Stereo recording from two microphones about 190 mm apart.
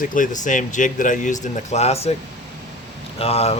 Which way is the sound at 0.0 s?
45° left (ahead or behind).